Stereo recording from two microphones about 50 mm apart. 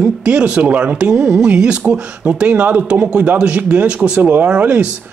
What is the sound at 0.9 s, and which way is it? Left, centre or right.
A man's voice, centre.